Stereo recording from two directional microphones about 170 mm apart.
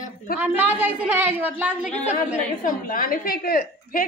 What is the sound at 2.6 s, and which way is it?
A woman's voice, 55° left (ahead or behind).